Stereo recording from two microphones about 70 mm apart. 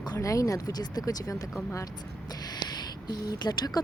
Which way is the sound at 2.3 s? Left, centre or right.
Left.